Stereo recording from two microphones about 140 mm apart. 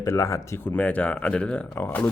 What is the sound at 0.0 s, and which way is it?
Speech, 20° left (ahead or behind).